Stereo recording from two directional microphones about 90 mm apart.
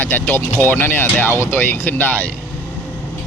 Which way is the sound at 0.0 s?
20° left (ahead or behind).